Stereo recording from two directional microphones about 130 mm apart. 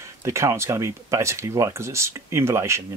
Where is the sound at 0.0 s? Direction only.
20° right (ahead or behind).